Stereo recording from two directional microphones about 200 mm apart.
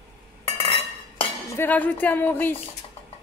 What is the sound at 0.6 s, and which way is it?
Cutlery, 25° left (ahead or behind).